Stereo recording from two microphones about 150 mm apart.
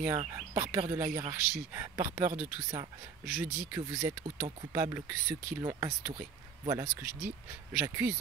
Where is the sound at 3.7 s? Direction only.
20° right (ahead or behind).